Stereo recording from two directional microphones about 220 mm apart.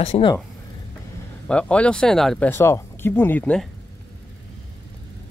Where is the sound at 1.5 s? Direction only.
5° left (ahead or behind).